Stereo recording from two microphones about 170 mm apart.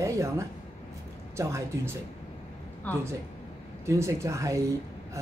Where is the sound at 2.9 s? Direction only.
10° left (ahead or behind).